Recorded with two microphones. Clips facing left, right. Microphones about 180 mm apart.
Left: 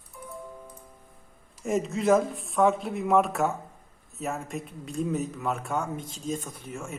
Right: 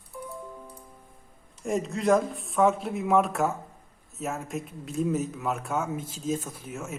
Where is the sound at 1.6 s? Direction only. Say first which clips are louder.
Left 1 dB; centre (ahead or behind).